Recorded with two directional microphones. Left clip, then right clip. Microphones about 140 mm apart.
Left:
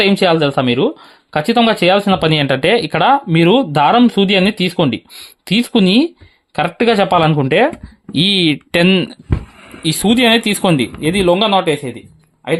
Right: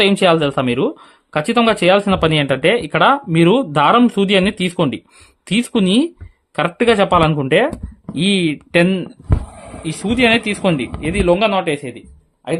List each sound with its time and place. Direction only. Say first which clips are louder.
0.0 s speech: left 1 dB; 15° left (ahead or behind)
2.3 s speech: left 2 dB; 30° left (ahead or behind)
9.8 s speech: left 3 dB; 40° left (ahead or behind)